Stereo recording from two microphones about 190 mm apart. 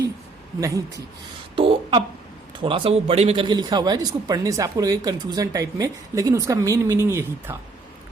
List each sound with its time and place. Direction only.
1.5 s speech: 30° right (ahead or behind)